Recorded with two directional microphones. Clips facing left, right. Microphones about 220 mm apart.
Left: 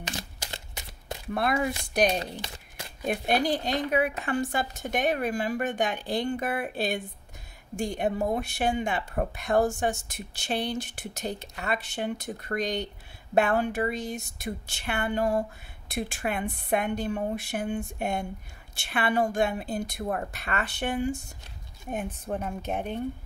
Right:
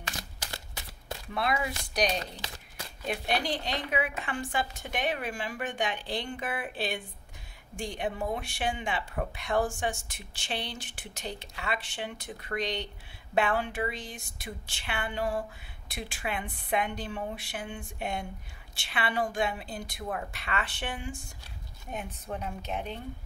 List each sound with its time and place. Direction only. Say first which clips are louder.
0.0 s shuffling cards: left 4 dB; 20° left (ahead or behind)
1.3 s speech: left 4 dB; 50° left (ahead or behind)
22.3 s speech: left 4 dB; 50° left (ahead or behind)